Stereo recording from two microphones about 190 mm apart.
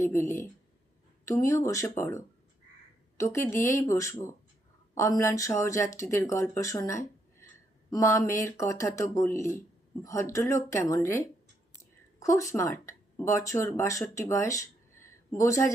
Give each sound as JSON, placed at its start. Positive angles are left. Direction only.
{"t": 0.0, "sound": "speech", "side_deg": 15}